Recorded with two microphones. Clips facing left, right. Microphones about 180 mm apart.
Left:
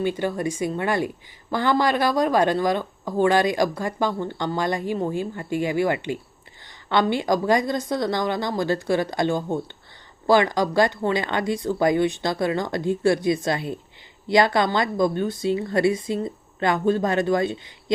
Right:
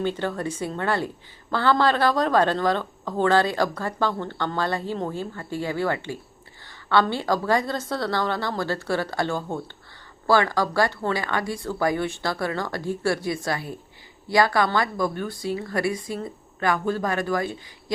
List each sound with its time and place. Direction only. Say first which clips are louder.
0.0 s a woman's voice: left 2 dB; 10° left (ahead or behind)